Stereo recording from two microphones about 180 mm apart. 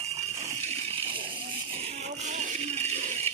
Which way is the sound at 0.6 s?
35° right (ahead or behind).